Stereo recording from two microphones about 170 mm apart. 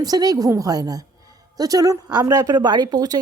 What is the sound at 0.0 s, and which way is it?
A woman's voice, 20° right (ahead or behind).